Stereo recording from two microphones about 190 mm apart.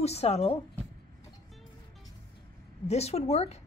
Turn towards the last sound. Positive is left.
turn(degrees=35)  # may be behind; listen again after turning